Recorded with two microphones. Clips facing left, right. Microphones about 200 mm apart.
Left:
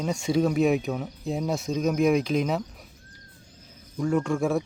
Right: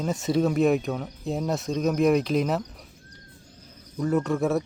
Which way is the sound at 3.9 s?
5° right (ahead or behind).